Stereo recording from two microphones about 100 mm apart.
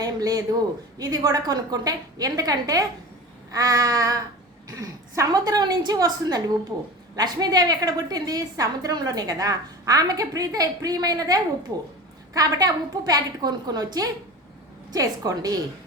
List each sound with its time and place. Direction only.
0.0 s a man's voice: 35° right (ahead or behind)